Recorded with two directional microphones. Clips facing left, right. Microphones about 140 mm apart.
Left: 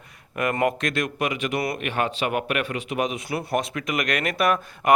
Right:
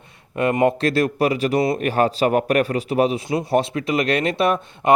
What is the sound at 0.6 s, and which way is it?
A man's voice, 30° right (ahead or behind).